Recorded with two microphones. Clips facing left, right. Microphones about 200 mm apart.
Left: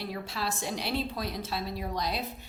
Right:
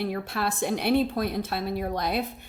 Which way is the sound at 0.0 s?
55° right (ahead or behind).